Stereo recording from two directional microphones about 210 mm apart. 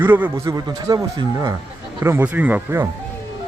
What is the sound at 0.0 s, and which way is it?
A man's voice, 10° right (ahead or behind).